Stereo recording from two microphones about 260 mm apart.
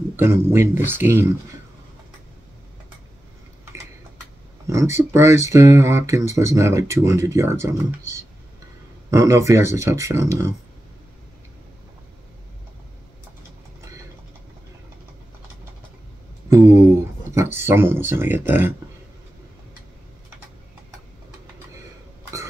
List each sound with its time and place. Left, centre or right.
0.1 s speech: centre
4.6 s speech: centre
17.3 s speech: centre